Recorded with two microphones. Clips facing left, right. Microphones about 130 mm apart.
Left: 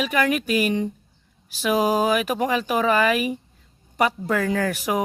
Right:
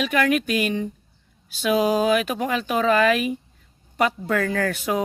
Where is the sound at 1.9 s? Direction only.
10° left (ahead or behind).